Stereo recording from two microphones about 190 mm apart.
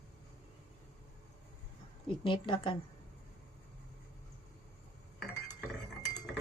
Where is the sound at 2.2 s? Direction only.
25° left (ahead or behind).